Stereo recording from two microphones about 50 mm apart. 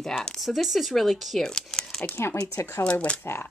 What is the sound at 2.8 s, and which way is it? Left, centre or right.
Speech, left.